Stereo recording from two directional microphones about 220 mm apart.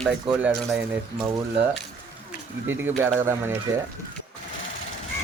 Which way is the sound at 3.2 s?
10° right (ahead or behind).